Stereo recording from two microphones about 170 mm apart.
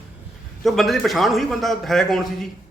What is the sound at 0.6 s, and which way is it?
A man's voice, centre (ahead or behind).